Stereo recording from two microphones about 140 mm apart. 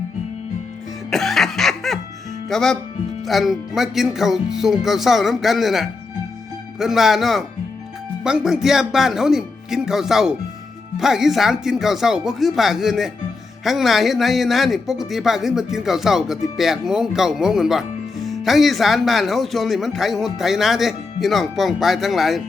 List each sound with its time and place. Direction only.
1.1 s music: centre (ahead or behind)
2.5 s speech: 5° left (ahead or behind)